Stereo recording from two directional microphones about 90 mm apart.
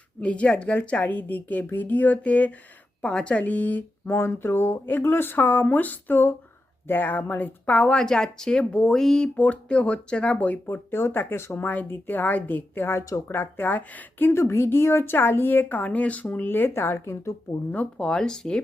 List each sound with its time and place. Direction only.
0.2 s a woman's voice: 15° left (ahead or behind)
17.7 s a woman's voice: 15° left (ahead or behind)